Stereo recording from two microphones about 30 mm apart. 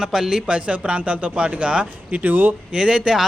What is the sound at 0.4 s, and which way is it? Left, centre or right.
Speech, right.